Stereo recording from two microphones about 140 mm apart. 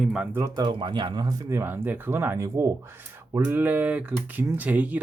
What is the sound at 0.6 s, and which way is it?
Speech, 35° right (ahead or behind).